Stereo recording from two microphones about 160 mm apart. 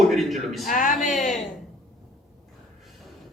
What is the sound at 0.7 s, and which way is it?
Speech, 55° left (ahead or behind).